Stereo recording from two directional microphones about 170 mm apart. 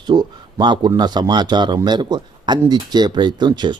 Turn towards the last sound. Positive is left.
turn(degrees=-25)  # may be behind; listen again after turning